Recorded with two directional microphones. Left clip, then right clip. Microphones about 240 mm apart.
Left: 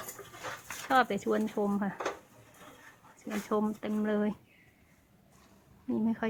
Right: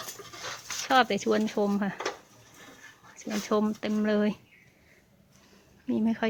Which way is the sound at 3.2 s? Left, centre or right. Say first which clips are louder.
Right 4 dB; right.